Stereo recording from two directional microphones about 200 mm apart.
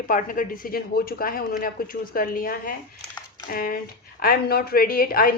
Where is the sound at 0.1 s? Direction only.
45° left (ahead or behind).